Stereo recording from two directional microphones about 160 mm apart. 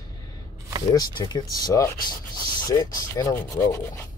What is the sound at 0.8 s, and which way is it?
Speech, 25° left (ahead or behind).